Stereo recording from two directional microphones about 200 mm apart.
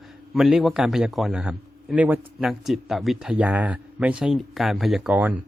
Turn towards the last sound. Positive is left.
turn(degrees=-10)  # may be behind; listen again after turning